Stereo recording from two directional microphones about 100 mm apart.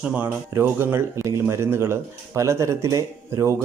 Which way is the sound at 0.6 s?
25° right (ahead or behind).